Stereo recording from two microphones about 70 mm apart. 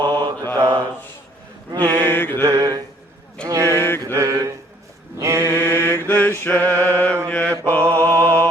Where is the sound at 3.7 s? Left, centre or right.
Left.